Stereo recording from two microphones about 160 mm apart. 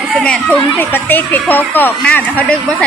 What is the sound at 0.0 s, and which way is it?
A woman's voice, centre (ahead or behind).